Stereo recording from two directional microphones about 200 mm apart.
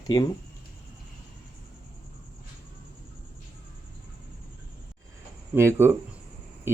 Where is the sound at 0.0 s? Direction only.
20° left (ahead or behind).